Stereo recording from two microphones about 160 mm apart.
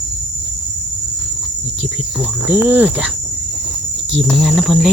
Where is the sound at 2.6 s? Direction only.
10° right (ahead or behind).